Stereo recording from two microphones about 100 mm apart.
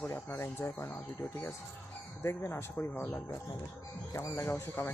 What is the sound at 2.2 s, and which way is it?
Speech, 25° left (ahead or behind).